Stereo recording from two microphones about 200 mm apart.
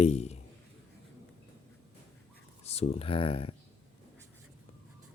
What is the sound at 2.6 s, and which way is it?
Speech, 30° left (ahead or behind).